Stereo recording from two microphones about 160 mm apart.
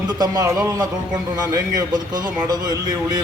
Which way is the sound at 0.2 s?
20° right (ahead or behind).